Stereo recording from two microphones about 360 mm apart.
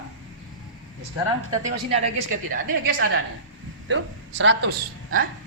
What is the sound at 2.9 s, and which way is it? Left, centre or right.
A woman's voice, right.